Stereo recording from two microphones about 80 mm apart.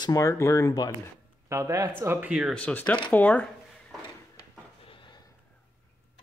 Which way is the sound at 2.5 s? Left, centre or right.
Centre.